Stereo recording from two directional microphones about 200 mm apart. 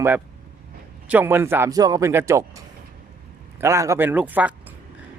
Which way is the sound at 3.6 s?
15° right (ahead or behind).